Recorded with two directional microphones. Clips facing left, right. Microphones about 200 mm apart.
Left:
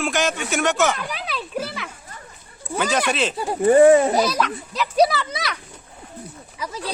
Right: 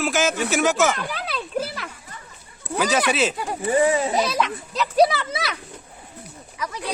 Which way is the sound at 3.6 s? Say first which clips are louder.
Left 8 dB; 55° left (ahead or behind).